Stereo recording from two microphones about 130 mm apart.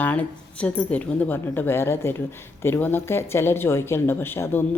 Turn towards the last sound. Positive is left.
turn(degrees=15)  # may be behind; listen again after turning